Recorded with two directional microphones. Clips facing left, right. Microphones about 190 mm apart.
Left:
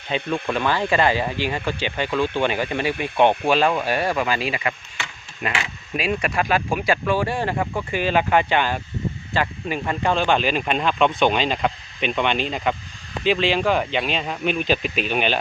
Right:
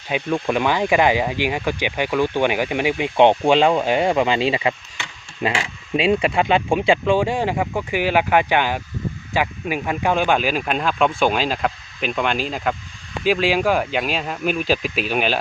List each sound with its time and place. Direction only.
0.1 s speech: 15° right (ahead or behind)